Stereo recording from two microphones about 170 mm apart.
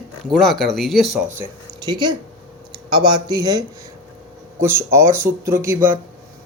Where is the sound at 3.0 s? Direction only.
25° right (ahead or behind).